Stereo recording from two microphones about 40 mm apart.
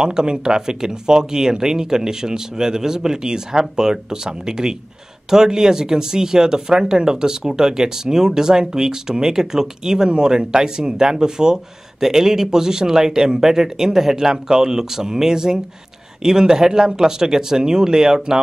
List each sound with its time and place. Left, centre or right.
0.0 s speech: right